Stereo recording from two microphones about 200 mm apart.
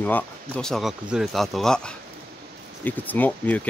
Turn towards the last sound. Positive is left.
turn(degrees=10)  # may be behind; listen again after turning